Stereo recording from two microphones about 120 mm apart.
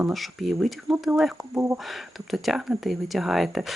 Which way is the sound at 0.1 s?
Centre (ahead or behind).